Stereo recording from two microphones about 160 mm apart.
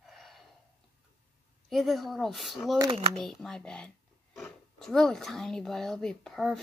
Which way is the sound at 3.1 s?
Centre (ahead or behind).